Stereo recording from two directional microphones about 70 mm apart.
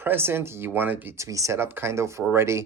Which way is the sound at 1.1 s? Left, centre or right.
Right.